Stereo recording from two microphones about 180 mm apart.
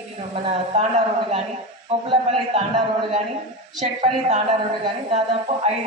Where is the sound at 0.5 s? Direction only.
35° right (ahead or behind).